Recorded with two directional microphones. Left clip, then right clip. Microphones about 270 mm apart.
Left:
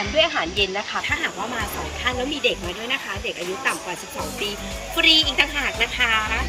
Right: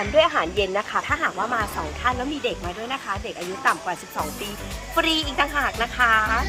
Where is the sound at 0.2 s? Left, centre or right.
Right.